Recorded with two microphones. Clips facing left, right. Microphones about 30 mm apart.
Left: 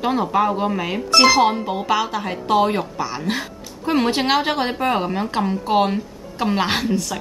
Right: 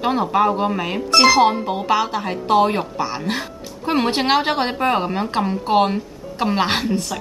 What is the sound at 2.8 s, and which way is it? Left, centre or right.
Speech, centre.